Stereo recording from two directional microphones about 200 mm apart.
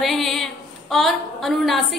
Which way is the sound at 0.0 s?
Centre (ahead or behind).